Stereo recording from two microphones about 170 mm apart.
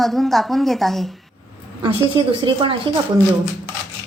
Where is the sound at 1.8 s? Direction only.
25° right (ahead or behind).